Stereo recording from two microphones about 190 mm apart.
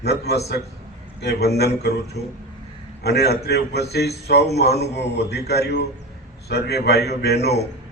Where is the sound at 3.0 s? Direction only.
60° left (ahead or behind).